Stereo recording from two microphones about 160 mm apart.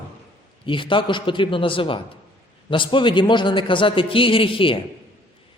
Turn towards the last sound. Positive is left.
turn(degrees=35)  # may be behind; listen again after turning